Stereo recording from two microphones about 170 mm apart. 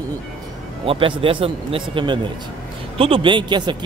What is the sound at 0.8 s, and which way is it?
A man's voice, 30° right (ahead or behind).